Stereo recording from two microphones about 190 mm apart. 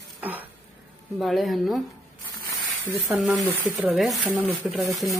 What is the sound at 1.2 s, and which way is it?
Speech, centre (ahead or behind).